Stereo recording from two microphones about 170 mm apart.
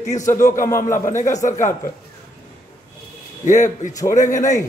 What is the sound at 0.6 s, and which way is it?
Speech, 15° left (ahead or behind).